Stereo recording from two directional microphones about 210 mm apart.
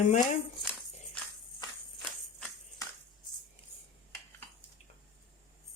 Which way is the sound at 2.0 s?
10° left (ahead or behind).